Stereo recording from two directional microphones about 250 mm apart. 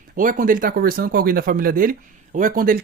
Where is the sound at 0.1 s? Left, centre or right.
Right.